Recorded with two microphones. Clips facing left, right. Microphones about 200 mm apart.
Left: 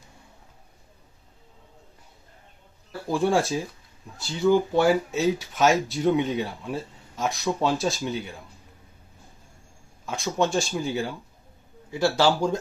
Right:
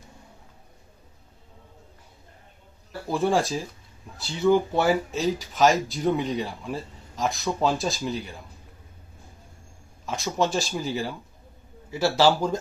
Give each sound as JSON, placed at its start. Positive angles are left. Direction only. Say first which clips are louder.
{"t": 3.1, "sound": "speech", "louder": "left 1 dB", "side_deg": 0}
{"t": 10.1, "sound": "speech", "louder": "left 1 dB", "side_deg": 0}